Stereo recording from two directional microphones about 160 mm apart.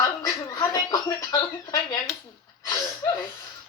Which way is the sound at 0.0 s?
25° left (ahead or behind).